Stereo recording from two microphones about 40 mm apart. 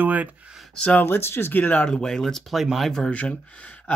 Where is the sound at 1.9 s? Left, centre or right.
Centre.